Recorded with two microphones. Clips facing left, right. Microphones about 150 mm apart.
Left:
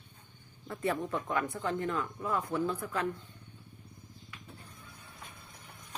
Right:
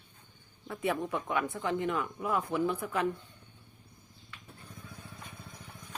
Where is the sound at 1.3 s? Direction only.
Centre (ahead or behind).